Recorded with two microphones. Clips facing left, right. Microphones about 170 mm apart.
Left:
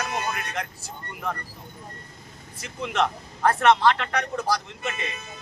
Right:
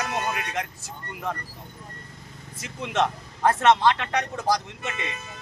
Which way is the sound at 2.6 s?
20° right (ahead or behind).